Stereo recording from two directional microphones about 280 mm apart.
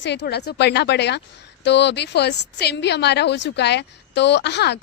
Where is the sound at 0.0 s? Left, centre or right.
Left.